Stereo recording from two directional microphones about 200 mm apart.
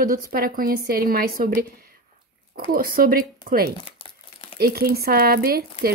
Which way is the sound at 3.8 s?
30° left (ahead or behind).